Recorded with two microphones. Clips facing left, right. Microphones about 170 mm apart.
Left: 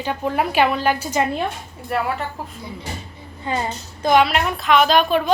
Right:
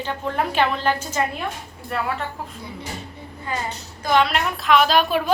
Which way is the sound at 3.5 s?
25° left (ahead or behind).